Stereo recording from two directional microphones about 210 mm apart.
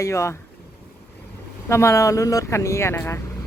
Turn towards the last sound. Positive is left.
turn(degrees=10)  # may be behind; listen again after turning